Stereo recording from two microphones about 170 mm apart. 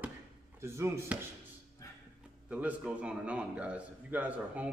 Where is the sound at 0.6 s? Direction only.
15° right (ahead or behind).